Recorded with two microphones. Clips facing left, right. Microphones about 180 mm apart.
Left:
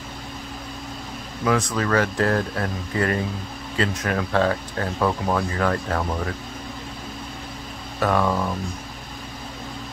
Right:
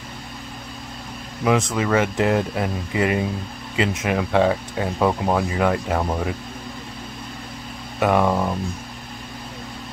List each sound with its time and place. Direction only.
1.4 s speech: 20° right (ahead or behind)
8.0 s speech: 20° right (ahead or behind)